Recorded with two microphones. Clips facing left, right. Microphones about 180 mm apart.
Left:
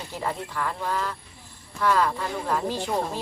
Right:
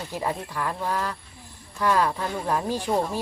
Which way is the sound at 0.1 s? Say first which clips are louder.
Right 1 dB; 15° right (ahead or behind).